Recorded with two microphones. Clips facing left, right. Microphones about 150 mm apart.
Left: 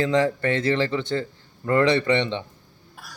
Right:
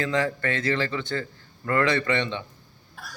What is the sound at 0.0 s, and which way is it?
A man's voice, 25° left (ahead or behind).